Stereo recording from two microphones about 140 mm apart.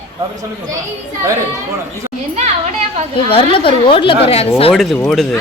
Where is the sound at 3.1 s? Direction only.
40° left (ahead or behind).